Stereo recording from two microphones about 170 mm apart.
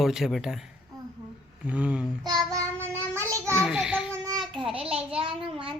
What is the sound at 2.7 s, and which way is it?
Child singing, 10° left (ahead or behind).